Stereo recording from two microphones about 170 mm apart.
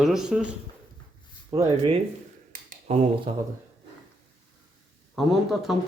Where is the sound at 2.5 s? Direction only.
45° right (ahead or behind).